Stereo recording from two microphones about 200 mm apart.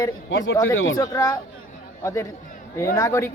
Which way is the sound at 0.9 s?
15° left (ahead or behind).